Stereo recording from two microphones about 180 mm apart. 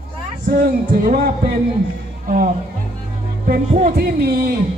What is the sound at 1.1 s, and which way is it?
Speech, 50° right (ahead or behind).